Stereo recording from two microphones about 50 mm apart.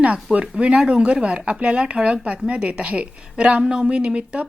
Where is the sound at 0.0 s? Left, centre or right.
Right.